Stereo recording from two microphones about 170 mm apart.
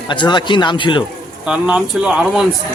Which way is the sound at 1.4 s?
5° right (ahead or behind).